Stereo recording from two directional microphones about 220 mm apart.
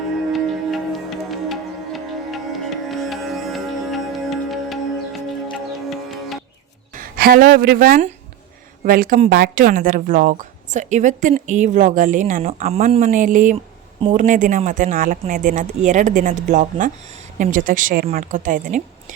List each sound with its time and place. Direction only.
0.3 s music: centre (ahead or behind)
6.9 s a woman's voice: 40° right (ahead or behind)